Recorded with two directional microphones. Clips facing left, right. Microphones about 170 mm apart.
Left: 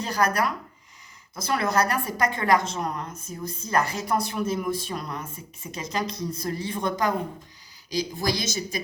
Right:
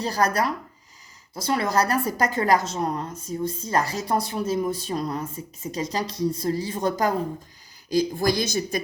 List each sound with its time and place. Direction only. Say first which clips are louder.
0.0 s a woman's voice: right 1 dB; 35° right (ahead or behind)
7.9 s speech: right 5 dB; 50° right (ahead or behind)